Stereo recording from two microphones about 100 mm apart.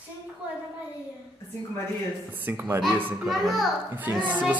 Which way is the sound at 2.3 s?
20° right (ahead or behind).